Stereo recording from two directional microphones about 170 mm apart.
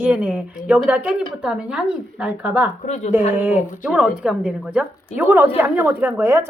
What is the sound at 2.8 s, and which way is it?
Speech, 40° left (ahead or behind).